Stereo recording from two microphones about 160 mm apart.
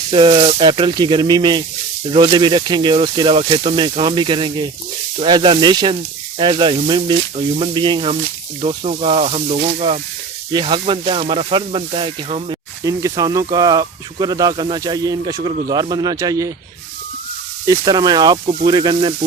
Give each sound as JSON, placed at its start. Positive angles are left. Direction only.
{"t": 0.1, "sound": "speech", "side_deg": -30}
{"t": 12.8, "sound": "speech", "side_deg": -20}
{"t": 17.7, "sound": "speech", "side_deg": -25}